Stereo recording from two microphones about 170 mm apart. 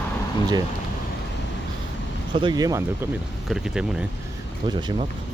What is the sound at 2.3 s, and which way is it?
Speech, 25° right (ahead or behind).